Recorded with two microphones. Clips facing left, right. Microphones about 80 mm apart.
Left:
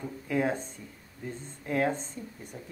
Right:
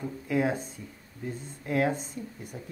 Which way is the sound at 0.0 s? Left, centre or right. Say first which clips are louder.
Right 1 dB; centre.